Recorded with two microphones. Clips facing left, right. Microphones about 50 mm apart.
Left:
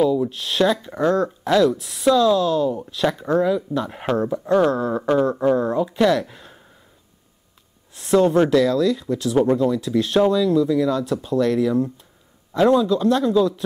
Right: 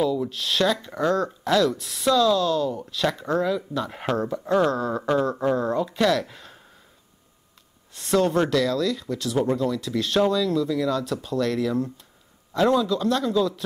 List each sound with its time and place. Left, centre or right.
0.0 s speech: centre
1.7 s speech: centre
4.6 s speech: centre
7.9 s speech: centre
8.5 s a man's voice: left